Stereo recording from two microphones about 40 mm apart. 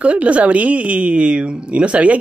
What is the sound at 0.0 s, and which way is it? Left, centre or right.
Speech, right.